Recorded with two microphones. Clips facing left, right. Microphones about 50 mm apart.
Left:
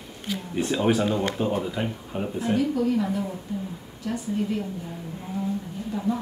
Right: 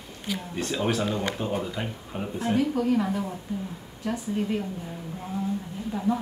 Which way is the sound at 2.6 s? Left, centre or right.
Right.